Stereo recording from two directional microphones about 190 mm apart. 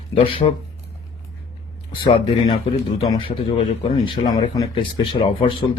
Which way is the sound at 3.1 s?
25° left (ahead or behind).